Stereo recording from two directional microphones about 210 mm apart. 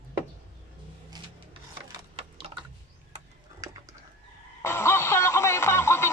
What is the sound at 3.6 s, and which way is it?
Bird, 15° right (ahead or behind).